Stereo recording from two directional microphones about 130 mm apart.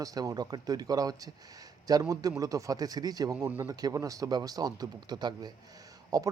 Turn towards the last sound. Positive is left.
turn(degrees=-30)  # may be behind; listen again after turning